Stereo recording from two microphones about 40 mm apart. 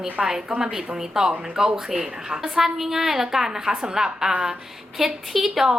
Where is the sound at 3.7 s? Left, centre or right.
Right.